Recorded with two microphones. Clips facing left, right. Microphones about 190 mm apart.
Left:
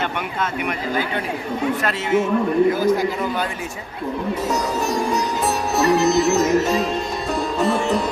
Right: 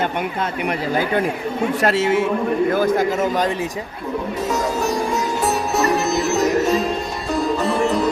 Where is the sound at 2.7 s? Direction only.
55° right (ahead or behind).